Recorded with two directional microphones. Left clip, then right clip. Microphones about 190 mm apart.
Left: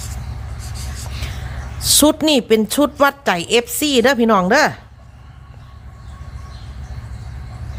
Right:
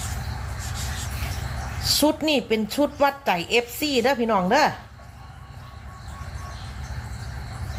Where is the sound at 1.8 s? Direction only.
55° left (ahead or behind).